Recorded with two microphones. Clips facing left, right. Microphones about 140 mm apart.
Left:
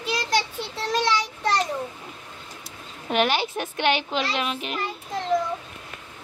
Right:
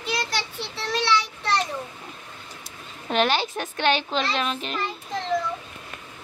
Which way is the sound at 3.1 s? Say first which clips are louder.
Even; 10° left (ahead or behind).